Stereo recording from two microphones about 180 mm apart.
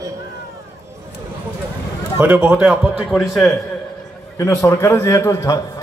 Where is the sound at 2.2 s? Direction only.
10° right (ahead or behind).